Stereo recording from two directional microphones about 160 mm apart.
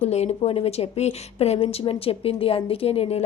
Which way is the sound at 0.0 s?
40° left (ahead or behind).